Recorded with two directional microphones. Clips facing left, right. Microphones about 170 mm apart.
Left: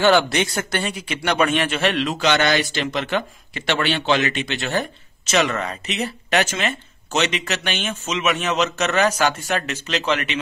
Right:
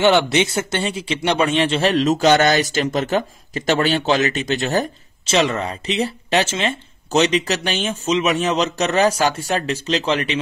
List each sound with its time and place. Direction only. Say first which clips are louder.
0.0 s speech: right 2 dB; 20° right (ahead or behind); by 5.3 s 40° right (ahead or behind)
5.3 s speech: right 2 dB; 30° right (ahead or behind)